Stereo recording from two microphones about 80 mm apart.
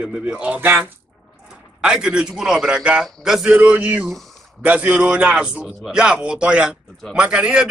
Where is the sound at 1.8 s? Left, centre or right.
Centre.